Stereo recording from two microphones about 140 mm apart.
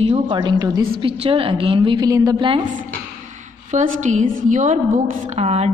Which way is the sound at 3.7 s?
55° right (ahead or behind).